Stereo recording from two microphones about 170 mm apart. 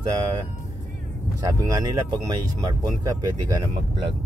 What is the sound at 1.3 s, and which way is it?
Speech, 20° right (ahead or behind).